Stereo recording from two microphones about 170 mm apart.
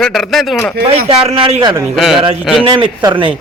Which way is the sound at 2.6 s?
30° right (ahead or behind).